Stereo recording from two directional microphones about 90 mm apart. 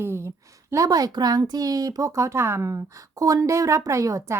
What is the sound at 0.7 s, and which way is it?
Speech, 40° right (ahead or behind).